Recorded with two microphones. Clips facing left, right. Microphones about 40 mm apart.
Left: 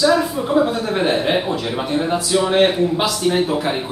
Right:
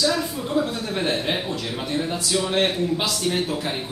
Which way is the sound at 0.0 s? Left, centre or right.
Centre.